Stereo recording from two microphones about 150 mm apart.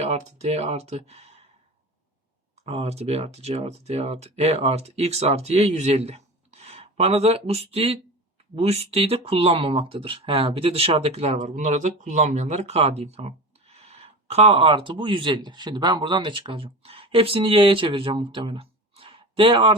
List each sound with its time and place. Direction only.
0.0 s speech: 45° right (ahead or behind)
2.6 s speech: 45° right (ahead or behind)